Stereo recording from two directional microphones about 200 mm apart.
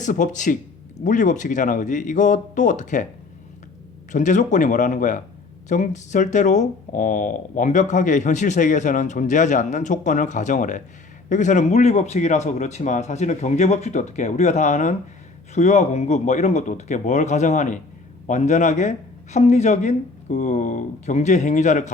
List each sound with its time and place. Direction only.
0.0 s speech: 40° left (ahead or behind)
4.1 s speech: 40° left (ahead or behind)